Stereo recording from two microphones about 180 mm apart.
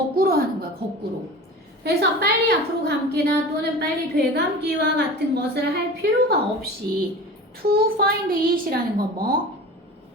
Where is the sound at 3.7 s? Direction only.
65° right (ahead or behind).